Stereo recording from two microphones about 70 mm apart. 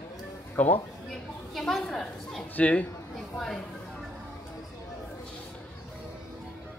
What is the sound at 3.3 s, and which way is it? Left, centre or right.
Speech, centre.